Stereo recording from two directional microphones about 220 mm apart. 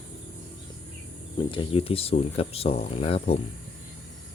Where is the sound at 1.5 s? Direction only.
25° left (ahead or behind).